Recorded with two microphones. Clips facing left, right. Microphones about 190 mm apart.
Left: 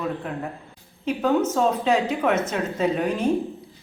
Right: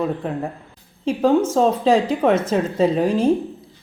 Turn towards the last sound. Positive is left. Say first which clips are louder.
# right 5 dB
turn(degrees=-30)  # may be behind; listen again after turning